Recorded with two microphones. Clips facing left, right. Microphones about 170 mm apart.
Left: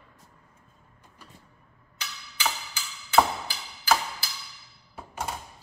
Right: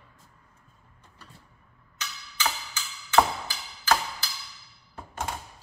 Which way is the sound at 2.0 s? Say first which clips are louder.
Right 2 dB; 10° left (ahead or behind).